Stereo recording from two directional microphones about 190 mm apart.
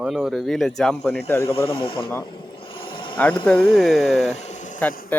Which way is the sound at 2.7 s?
25° left (ahead or behind).